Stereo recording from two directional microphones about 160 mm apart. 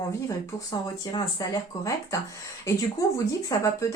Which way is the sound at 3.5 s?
25° left (ahead or behind).